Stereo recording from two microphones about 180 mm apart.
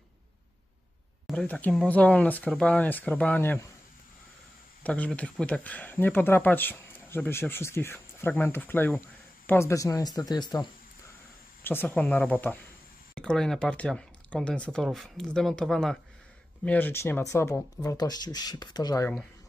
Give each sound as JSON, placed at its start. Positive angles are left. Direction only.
{"t": 1.2, "sound": "speech", "side_deg": 5}
{"t": 4.8, "sound": "speech", "side_deg": 5}
{"t": 11.6, "sound": "speech", "side_deg": 10}